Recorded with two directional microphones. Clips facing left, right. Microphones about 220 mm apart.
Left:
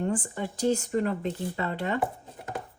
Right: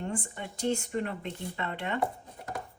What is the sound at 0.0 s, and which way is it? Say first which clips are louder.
Speech: left 6 dB; 40° left (ahead or behind).